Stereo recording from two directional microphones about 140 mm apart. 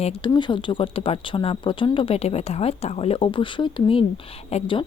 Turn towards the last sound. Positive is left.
turn(degrees=40)  # may be behind; listen again after turning